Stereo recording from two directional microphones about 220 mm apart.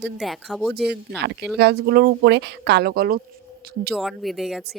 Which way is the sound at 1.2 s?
50° right (ahead or behind).